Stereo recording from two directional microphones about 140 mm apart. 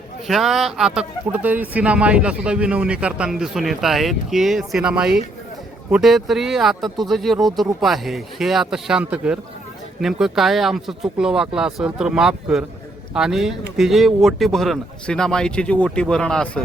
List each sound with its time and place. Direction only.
0.3 s speech: centre (ahead or behind)